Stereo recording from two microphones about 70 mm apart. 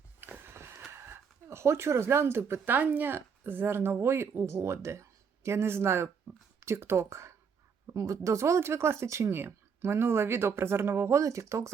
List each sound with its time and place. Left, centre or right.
0.2 s speech: right